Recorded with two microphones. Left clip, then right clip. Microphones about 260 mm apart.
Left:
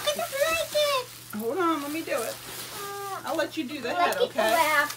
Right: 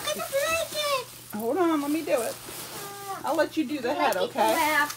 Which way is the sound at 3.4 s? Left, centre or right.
Centre.